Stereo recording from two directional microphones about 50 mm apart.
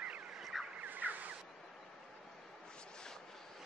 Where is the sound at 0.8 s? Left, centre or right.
Right.